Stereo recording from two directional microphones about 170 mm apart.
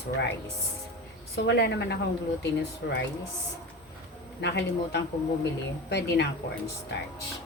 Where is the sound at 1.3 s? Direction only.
90° left.